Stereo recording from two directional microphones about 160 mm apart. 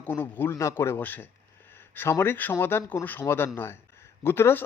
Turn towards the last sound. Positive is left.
turn(degrees=15)  # may be behind; listen again after turning